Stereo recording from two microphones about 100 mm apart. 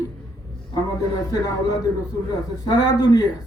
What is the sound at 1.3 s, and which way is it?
A man's voice, 40° left (ahead or behind).